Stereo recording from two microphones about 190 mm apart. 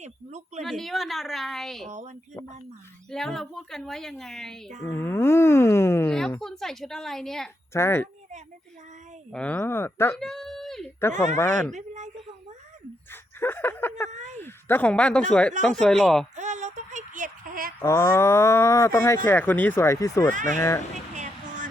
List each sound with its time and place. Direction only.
0.0 s speech: 35° right (ahead or behind)
0.6 s a woman's voice: centre (ahead or behind)
3.1 s a woman's voice: centre (ahead or behind)
4.9 s speech: 15° left (ahead or behind)
6.4 s a woman's voice: centre (ahead or behind)
7.7 s speech: 15° left (ahead or behind)
9.3 s speech: 5° left (ahead or behind)
10.2 s a sound: centre (ahead or behind)
11.3 s speech: 10° left (ahead or behind)
11.7 s a sound: 40° right (ahead or behind)
13.4 s a woman's voice: 10° left (ahead or behind)
16.3 s a sound: 40° right (ahead or behind)
17.8 s speech: 15° left (ahead or behind)
21.2 s a sound: 40° right (ahead or behind)